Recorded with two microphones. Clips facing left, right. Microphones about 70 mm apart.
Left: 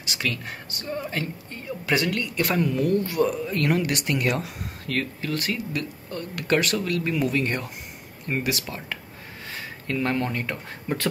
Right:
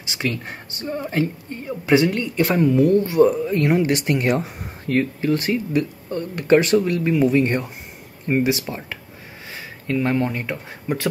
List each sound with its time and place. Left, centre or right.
0.0 s speech: right
9.8 s speech: centre